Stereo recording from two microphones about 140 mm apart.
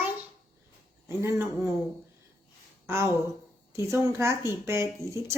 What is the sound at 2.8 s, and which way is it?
A child's voice, 20° right (ahead or behind).